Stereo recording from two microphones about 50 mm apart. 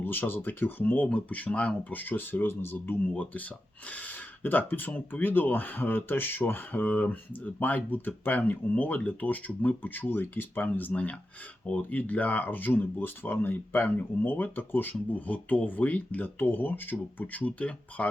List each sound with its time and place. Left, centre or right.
0.0 s speech: left
3.2 s speech: left